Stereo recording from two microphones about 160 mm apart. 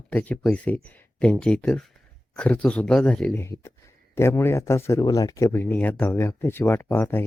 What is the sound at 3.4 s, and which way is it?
Speech, 15° left (ahead or behind).